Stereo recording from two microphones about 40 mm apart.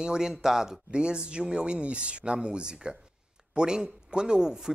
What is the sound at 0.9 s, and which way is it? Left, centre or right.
Speech, right.